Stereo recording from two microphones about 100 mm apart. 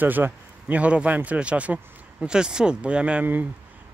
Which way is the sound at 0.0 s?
20° right (ahead or behind).